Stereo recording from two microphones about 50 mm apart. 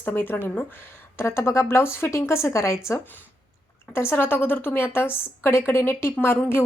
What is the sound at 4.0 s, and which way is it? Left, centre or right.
Speech, left.